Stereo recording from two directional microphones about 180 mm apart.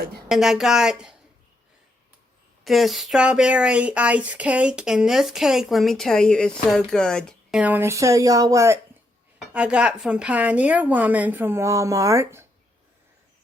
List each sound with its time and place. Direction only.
0.3 s speech: centre (ahead or behind)
2.6 s speech: centre (ahead or behind)
7.6 s speech: 10° right (ahead or behind)